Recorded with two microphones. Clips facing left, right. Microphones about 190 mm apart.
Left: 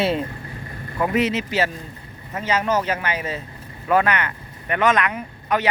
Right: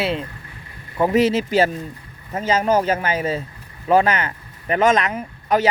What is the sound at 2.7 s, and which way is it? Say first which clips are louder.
Speech: right 4 dB; 45° right (ahead or behind).